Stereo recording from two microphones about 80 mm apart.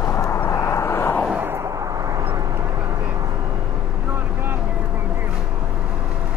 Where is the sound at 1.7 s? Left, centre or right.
Right.